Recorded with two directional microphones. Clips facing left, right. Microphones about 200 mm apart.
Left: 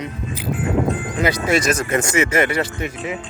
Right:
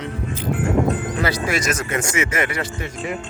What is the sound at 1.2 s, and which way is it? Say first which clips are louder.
Speech: left 6 dB; 20° left (ahead or behind).